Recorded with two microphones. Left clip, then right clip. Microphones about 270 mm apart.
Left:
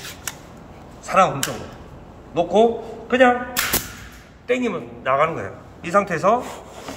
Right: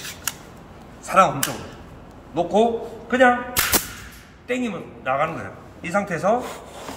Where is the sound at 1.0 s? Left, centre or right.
Centre.